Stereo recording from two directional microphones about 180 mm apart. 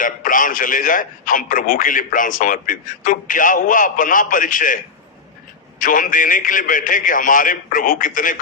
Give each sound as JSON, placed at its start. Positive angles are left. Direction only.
{"t": 0.0, "sound": "a man's voice", "side_deg": 50}
{"t": 5.8, "sound": "a man's voice", "side_deg": 50}